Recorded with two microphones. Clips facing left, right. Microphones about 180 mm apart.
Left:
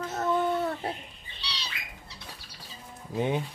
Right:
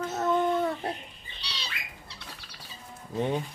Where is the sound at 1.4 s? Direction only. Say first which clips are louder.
Left 1 dB; 55° right (ahead or behind).